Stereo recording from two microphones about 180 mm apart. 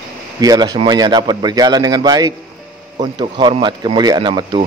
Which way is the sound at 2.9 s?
35° right (ahead or behind).